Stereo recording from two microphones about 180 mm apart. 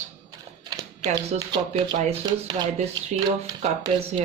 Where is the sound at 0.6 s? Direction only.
20° right (ahead or behind).